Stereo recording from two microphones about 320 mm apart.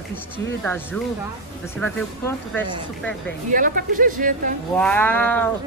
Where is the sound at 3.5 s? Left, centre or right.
Right.